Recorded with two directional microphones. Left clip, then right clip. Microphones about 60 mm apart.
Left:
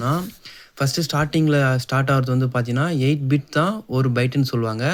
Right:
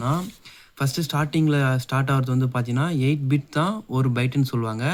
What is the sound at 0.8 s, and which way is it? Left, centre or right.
Speech, left.